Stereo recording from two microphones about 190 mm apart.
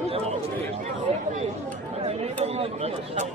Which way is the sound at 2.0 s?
30° right (ahead or behind).